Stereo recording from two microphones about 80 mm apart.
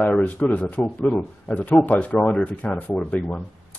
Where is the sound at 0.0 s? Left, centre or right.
Centre.